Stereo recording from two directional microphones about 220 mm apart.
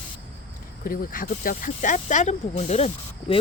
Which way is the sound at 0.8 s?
40° left (ahead or behind).